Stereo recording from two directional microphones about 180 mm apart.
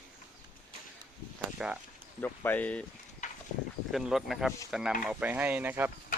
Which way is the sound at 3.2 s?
40° left (ahead or behind).